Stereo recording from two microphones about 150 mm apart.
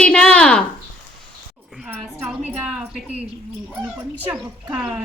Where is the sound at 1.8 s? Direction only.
10° right (ahead or behind).